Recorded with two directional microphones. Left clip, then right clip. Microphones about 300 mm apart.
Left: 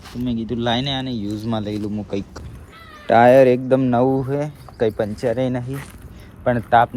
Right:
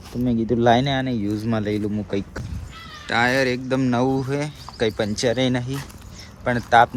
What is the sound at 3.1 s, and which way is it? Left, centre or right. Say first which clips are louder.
Speech: left 9 dB; centre.